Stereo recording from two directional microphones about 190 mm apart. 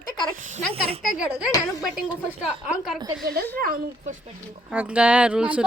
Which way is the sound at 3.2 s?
55° right (ahead or behind).